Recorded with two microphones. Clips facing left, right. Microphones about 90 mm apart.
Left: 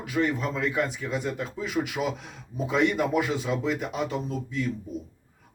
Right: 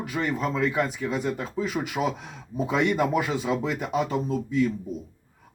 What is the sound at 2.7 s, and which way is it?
Speech, centre (ahead or behind).